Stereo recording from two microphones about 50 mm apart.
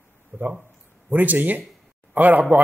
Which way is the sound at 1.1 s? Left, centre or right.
Right.